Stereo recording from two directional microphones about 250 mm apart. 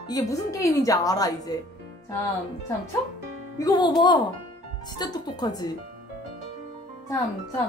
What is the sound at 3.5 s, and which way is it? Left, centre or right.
Speech, centre.